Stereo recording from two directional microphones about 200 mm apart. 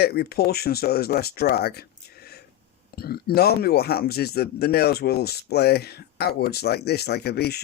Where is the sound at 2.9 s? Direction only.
50° left (ahead or behind).